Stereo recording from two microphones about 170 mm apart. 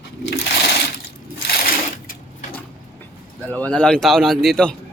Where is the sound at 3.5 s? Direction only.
5° left (ahead or behind).